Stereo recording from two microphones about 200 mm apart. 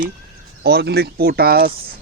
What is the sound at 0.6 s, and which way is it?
Speech, 55° right (ahead or behind).